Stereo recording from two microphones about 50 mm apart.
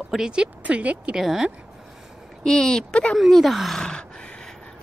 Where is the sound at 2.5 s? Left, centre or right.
Centre.